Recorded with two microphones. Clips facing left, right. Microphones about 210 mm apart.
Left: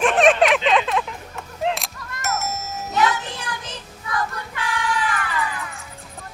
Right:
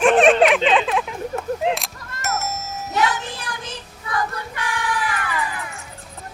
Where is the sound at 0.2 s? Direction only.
Centre (ahead or behind).